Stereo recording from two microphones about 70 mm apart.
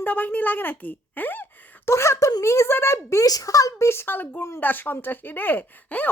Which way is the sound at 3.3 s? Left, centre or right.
Left.